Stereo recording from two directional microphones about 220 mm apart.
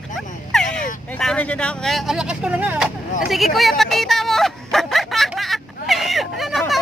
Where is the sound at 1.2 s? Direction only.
5° left (ahead or behind).